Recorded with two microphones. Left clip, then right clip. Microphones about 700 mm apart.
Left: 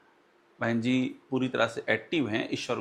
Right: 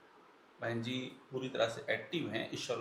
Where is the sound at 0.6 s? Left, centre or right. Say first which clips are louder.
Left 10 dB; left.